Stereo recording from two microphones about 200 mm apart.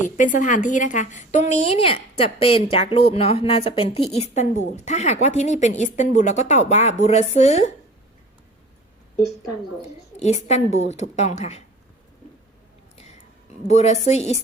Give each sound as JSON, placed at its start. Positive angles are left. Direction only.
{"t": 0.2, "sound": "a woman's voice", "side_deg": 40}
{"t": 10.2, "sound": "a woman's voice", "side_deg": 35}
{"t": 13.7, "sound": "a woman's voice", "side_deg": 35}